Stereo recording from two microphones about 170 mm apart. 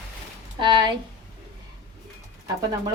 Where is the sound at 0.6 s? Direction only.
30° right (ahead or behind).